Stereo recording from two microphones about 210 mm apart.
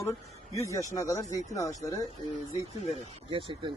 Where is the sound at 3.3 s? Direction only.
25° right (ahead or behind).